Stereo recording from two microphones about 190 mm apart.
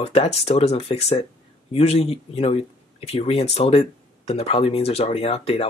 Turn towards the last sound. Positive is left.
turn(degrees=30)  # may be behind; listen again after turning